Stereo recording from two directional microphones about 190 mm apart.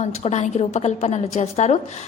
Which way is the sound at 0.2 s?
35° left (ahead or behind).